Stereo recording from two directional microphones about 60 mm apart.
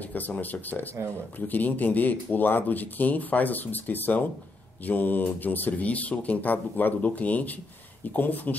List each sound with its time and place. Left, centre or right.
0.0 s speech: left